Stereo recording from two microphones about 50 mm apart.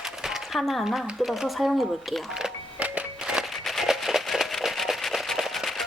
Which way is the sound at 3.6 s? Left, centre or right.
Centre.